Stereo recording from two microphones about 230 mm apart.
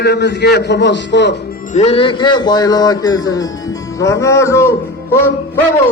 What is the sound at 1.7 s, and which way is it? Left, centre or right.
Speech, left.